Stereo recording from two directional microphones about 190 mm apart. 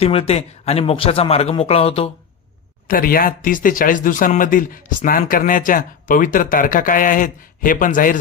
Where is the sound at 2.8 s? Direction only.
50° left (ahead or behind).